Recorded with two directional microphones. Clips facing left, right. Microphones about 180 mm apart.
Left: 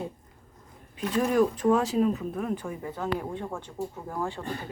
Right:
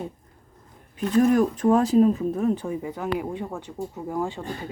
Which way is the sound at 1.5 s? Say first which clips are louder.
Right 5 dB; 45° right (ahead or behind).